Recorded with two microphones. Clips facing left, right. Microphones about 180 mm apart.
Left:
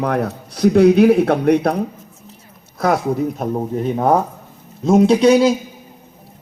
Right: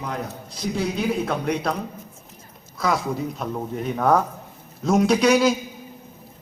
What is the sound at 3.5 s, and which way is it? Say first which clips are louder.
A man's voice: left 7 dB; 30° left (ahead or behind).